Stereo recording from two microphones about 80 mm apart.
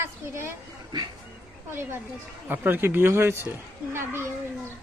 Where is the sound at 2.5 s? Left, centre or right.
Right.